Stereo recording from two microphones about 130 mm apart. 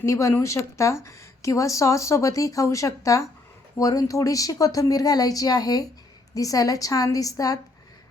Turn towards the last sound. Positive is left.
turn(degrees=25)  # may be behind; listen again after turning